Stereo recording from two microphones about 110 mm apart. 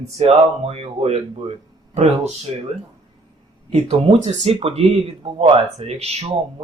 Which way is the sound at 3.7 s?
60° right (ahead or behind).